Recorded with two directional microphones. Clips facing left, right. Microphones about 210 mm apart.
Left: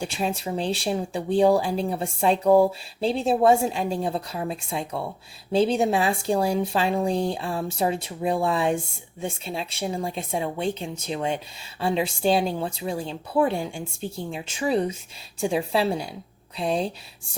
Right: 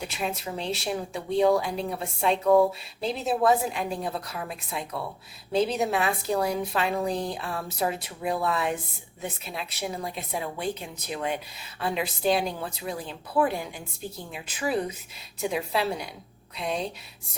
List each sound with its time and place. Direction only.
0.0 s a woman's voice: 30° left (ahead or behind)